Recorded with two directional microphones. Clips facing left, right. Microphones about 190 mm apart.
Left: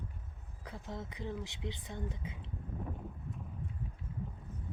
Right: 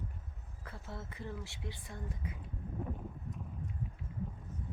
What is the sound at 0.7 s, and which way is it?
Speech, 15° left (ahead or behind).